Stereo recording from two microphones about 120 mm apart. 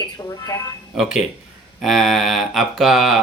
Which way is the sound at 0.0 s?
30° left (ahead or behind).